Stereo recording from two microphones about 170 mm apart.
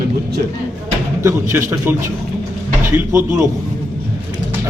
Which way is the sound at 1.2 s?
15° right (ahead or behind).